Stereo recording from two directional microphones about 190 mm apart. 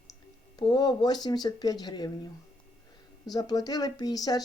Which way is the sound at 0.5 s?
20° left (ahead or behind).